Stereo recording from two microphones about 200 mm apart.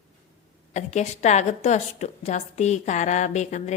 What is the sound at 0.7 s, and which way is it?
A woman's voice, 35° left (ahead or behind).